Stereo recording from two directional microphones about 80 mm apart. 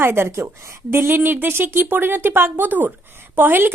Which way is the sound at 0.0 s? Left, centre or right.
Right.